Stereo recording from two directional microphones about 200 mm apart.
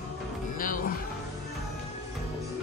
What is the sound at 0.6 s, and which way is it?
Music, 45° left (ahead or behind).